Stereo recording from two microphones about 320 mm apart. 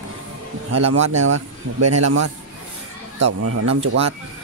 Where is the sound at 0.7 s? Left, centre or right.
Right.